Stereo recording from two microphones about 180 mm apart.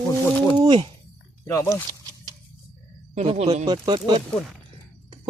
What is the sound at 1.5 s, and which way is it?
Speech, 15° left (ahead or behind).